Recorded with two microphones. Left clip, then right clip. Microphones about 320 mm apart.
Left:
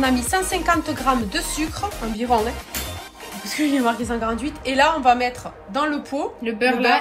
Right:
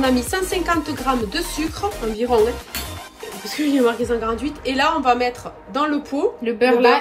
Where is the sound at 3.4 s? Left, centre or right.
Centre.